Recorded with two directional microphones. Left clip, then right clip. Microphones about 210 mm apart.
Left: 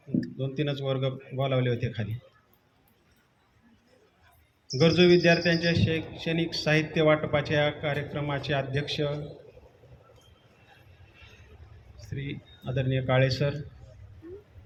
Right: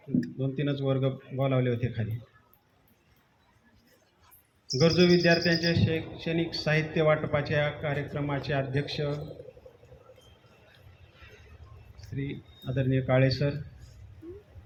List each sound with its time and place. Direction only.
0.3 s speech: 40° left (ahead or behind)
4.8 s speech: 40° left (ahead or behind)
12.1 s speech: 35° left (ahead or behind)